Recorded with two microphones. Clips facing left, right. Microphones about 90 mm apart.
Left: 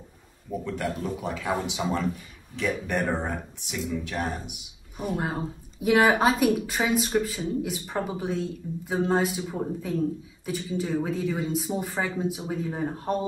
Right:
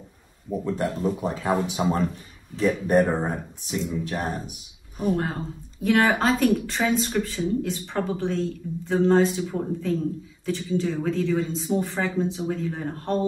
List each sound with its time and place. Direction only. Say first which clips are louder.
0.5 s speech: right 4 dB; 35° right (ahead or behind)
5.1 s a woman's voice: right 2 dB; 15° left (ahead or behind)